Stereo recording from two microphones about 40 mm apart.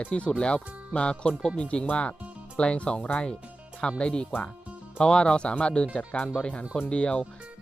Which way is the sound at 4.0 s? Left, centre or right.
Left.